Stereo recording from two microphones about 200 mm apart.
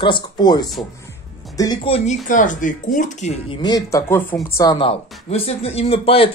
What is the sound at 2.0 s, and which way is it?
Speech, 40° left (ahead or behind).